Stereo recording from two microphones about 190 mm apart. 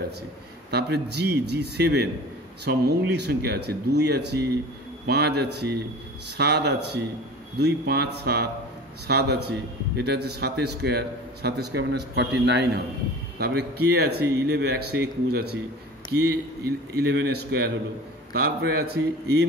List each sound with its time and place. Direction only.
0.7 s a man's voice: 60° right (ahead or behind)
16.9 s a man's voice: 60° right (ahead or behind)